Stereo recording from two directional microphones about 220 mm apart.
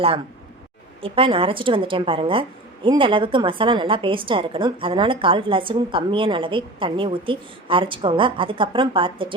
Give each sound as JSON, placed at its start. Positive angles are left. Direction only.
{"t": 1.0, "sound": "a woman's voice", "side_deg": -25}